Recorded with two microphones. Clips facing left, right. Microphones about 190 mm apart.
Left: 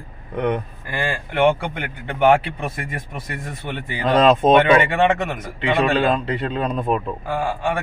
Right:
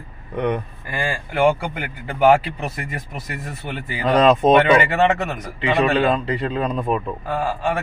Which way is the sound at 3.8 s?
Centre (ahead or behind).